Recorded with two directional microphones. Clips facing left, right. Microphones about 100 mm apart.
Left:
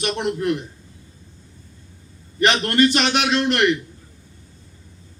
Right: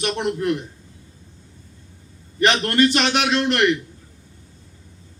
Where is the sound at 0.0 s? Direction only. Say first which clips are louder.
Even; 20° left (ahead or behind).